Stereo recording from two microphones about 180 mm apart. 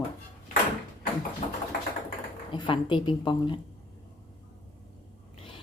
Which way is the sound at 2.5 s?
25° left (ahead or behind).